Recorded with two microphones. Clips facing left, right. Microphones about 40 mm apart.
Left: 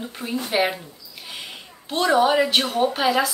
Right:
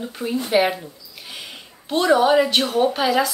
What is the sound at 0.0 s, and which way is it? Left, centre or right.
A woman's voice, centre.